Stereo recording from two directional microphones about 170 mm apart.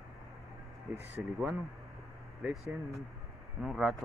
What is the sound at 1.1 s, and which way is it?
Speech, 5° right (ahead or behind).